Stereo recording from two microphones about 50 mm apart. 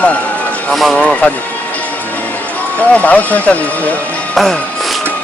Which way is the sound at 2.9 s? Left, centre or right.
Left.